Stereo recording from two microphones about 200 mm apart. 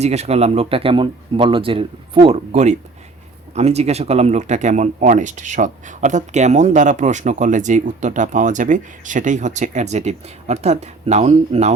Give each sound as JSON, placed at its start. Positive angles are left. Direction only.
{"t": 0.0, "sound": "speech", "side_deg": -35}